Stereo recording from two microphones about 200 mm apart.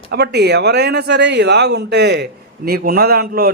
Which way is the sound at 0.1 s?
55° right (ahead or behind).